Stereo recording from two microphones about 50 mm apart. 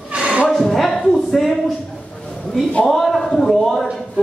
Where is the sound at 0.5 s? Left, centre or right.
Centre.